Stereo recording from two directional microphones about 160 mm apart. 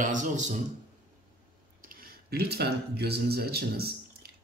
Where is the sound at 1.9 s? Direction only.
65° right (ahead or behind).